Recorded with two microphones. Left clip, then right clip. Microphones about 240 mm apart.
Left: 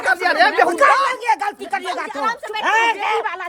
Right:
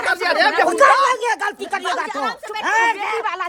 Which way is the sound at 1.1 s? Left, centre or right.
Right.